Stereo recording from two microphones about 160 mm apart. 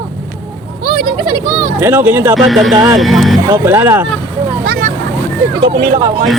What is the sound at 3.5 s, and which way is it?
Speech, 15° right (ahead or behind).